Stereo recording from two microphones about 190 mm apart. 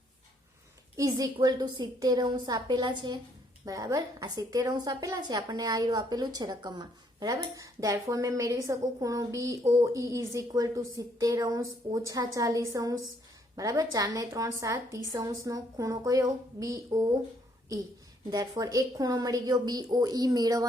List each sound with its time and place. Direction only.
0.9 s a woman's voice: 20° right (ahead or behind)
18.3 s a woman's voice: 20° right (ahead or behind)